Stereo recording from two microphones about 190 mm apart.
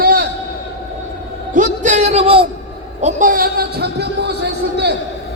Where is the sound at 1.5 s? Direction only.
40° right (ahead or behind).